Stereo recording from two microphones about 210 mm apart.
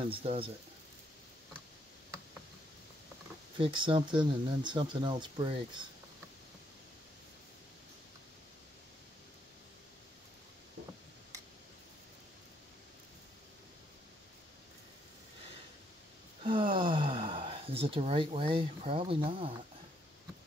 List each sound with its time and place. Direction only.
0.0 s speech: 25° right (ahead or behind)
3.5 s speech: 25° right (ahead or behind)
16.7 s speech: 25° right (ahead or behind)